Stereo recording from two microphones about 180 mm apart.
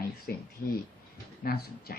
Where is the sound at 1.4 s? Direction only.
55° left (ahead or behind).